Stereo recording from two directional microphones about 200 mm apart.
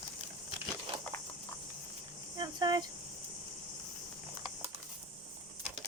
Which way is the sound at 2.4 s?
20° right (ahead or behind).